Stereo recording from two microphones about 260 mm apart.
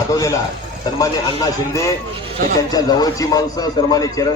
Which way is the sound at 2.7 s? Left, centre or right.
Centre.